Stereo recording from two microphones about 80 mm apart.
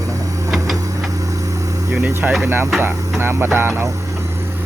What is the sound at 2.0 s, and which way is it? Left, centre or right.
Speech, centre.